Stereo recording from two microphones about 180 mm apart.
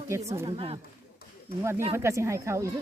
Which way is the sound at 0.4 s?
30° right (ahead or behind).